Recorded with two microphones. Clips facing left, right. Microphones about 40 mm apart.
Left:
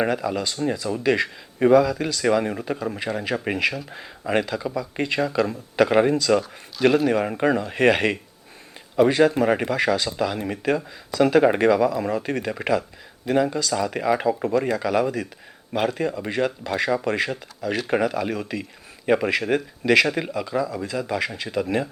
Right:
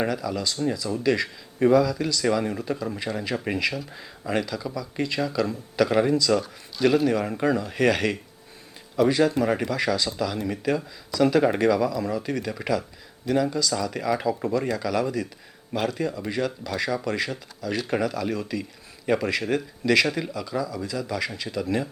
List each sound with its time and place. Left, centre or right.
0.0 s speech: left
6.8 s speech: centre
7.1 s speech: left